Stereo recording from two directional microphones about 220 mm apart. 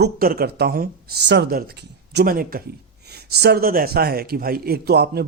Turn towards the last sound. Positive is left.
turn(degrees=-45)  # may be behind; listen again after turning